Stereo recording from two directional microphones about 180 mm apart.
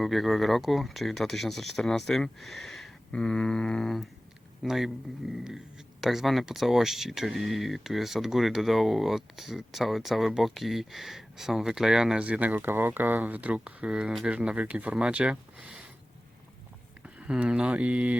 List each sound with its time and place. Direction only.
0.0 s speech: centre (ahead or behind)
17.0 s speech: 5° right (ahead or behind)